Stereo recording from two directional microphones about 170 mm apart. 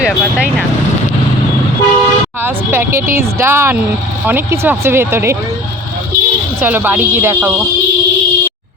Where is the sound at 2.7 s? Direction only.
15° right (ahead or behind).